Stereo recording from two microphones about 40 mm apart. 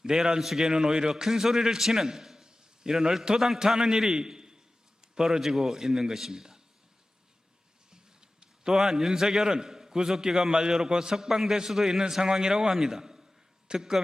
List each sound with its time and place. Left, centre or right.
0.0 s a man's voice: centre
7.9 s a sound: centre
8.7 s a man's voice: centre